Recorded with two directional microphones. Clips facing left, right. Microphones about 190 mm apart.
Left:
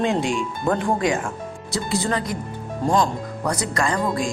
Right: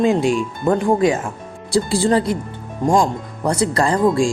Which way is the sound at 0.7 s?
20° right (ahead or behind).